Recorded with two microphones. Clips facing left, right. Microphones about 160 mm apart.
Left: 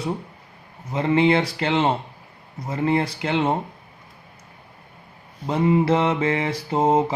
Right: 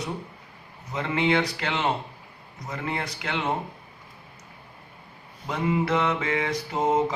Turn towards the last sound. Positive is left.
turn(degrees=30)  # may be behind; listen again after turning